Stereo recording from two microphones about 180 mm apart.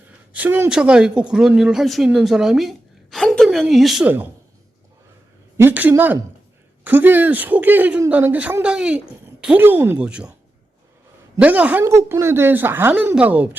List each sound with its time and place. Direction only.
0.3 s speech: 10° right (ahead or behind)
5.5 s a woman's voice: 10° right (ahead or behind)
11.3 s a woman's voice: 10° right (ahead or behind)